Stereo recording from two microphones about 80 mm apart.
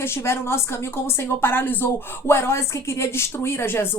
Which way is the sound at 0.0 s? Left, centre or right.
Left.